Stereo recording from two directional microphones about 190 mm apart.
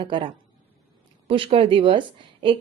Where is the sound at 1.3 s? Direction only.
30° right (ahead or behind).